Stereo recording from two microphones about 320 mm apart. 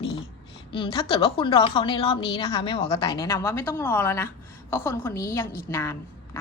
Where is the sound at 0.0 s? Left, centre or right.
Centre.